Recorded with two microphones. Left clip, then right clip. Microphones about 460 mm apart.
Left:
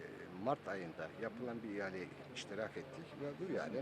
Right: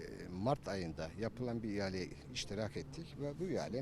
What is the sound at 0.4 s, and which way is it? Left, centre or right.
Speech, right.